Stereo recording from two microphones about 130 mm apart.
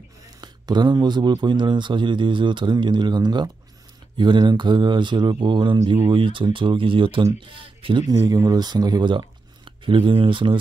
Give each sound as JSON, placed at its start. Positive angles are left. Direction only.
{"t": 0.4, "sound": "speech", "side_deg": -35}
{"t": 8.1, "sound": "speech", "side_deg": -25}